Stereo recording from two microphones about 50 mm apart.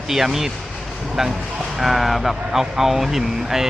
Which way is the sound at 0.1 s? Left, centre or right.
Centre.